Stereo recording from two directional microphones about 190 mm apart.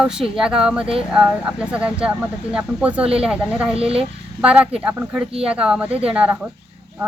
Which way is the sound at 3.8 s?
30° right (ahead or behind).